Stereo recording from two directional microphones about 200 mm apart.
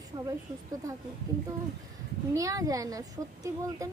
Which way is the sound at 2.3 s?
15° right (ahead or behind).